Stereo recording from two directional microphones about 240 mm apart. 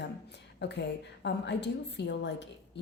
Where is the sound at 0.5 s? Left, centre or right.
Left.